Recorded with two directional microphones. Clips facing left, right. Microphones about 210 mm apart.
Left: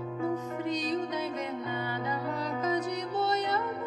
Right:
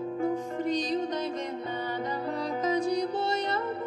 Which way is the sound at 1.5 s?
35° right (ahead or behind).